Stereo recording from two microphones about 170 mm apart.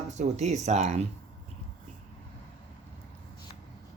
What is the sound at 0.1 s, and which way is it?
Speech, 40° right (ahead or behind).